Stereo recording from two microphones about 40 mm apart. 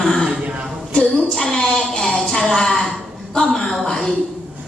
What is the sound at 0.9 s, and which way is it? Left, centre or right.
Speech, left.